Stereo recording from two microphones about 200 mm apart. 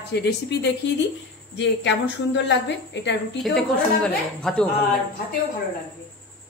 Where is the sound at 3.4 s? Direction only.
Centre (ahead or behind).